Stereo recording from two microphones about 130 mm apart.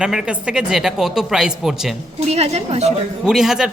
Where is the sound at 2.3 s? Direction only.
55° right (ahead or behind).